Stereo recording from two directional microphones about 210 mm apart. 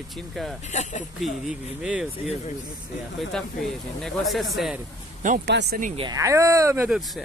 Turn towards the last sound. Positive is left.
turn(degrees=0)  # may be behind; listen again after turning